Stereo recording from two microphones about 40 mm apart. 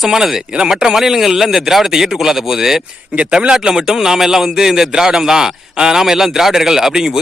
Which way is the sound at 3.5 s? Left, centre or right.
Centre.